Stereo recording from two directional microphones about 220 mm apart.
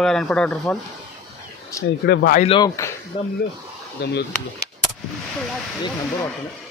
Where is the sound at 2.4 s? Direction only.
20° left (ahead or behind).